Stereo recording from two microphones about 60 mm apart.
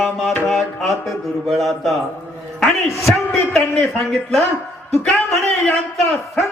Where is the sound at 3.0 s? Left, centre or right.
Centre.